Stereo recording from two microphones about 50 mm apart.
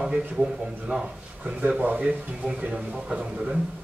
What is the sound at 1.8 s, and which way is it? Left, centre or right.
Speech, right.